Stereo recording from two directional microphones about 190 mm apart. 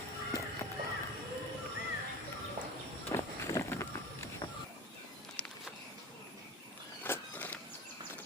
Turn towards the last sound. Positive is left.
turn(degrees=10)  # may be behind; listen again after turning